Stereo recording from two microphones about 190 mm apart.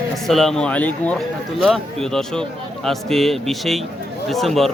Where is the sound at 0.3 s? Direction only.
Centre (ahead or behind).